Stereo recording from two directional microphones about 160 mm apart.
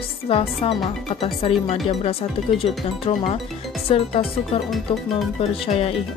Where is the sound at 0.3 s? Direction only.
35° left (ahead or behind).